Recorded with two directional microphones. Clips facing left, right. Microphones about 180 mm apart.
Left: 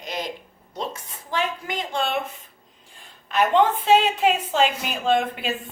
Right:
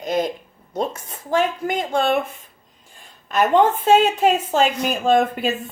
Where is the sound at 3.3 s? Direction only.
45° right (ahead or behind).